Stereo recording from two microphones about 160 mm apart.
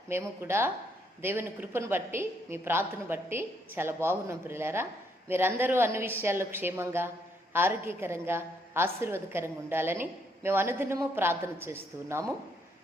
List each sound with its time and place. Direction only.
0.1 s a woman's voice: 15° right (ahead or behind)